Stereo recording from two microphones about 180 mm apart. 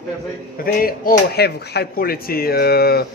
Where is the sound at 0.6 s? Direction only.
55° left (ahead or behind).